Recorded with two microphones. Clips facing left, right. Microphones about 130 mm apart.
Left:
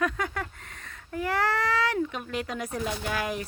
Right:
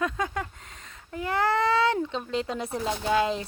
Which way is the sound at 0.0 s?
20° right (ahead or behind).